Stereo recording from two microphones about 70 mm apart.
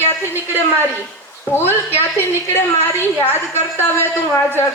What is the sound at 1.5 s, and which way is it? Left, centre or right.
A woman's voice, left.